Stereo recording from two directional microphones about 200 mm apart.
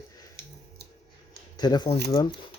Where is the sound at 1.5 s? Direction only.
20° left (ahead or behind).